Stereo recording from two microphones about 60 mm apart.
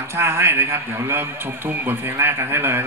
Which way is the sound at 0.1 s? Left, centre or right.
Right.